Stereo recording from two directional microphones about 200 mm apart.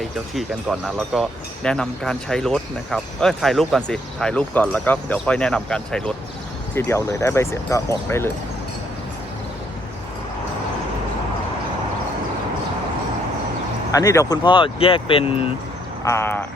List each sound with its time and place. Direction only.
0.3 s speech: centre (ahead or behind)
13.9 s speech: 15° left (ahead or behind)
16.0 s speech: 10° left (ahead or behind)